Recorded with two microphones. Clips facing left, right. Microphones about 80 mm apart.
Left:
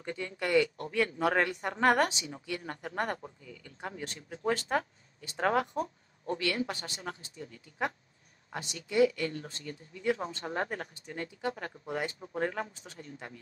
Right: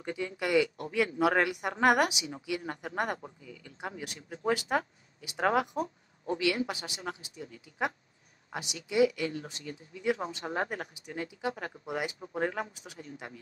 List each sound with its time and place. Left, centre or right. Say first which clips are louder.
0.0 s speech: right 2 dB; centre